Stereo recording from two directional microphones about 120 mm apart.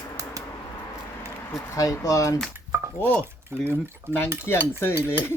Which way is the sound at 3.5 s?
20° right (ahead or behind).